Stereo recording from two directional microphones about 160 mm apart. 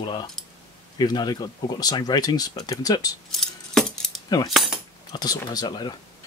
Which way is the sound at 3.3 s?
Centre (ahead or behind).